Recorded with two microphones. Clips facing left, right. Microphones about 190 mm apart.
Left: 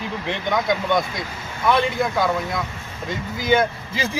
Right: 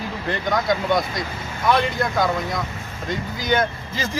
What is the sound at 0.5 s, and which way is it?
Speech, centre (ahead or behind).